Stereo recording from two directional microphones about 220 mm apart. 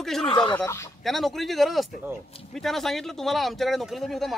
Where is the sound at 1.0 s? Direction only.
Centre (ahead or behind).